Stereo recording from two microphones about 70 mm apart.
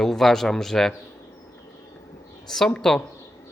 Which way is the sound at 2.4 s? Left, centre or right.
Centre.